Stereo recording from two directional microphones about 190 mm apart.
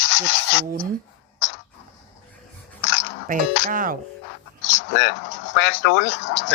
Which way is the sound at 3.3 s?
45° right (ahead or behind).